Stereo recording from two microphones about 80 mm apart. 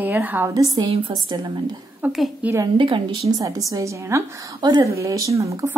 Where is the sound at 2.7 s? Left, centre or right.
Right.